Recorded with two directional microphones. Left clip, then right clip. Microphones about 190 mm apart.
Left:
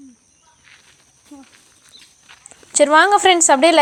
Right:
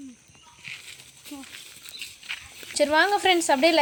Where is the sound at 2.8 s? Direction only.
20° left (ahead or behind).